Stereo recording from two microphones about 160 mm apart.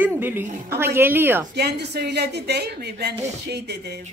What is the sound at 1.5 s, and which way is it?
Speech, 90° right.